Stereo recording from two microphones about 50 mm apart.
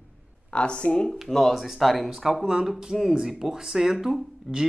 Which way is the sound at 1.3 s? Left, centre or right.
Centre.